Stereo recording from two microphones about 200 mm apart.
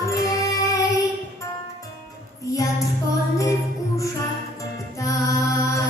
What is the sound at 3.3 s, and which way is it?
Music, 15° left (ahead or behind).